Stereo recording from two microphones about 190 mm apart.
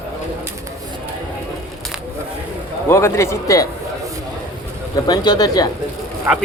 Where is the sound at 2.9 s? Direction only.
15° left (ahead or behind).